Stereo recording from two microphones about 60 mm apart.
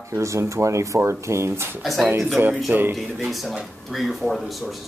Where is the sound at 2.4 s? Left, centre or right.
Right.